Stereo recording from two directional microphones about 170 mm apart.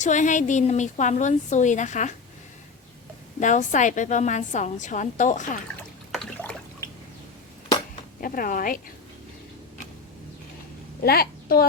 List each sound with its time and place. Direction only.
0.0 s a woman's voice: 45° left (ahead or behind)
3.4 s a woman's voice: 45° left (ahead or behind)
6.1 s trickle: 5° left (ahead or behind)
8.2 s a woman's voice: 55° left (ahead or behind)
11.0 s a woman's voice: 65° left (ahead or behind)